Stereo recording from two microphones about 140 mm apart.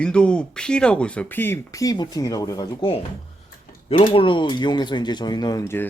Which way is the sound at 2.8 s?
40° left (ahead or behind).